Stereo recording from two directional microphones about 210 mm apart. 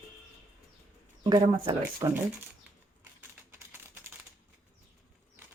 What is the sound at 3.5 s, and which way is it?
Typing, 10° right (ahead or behind).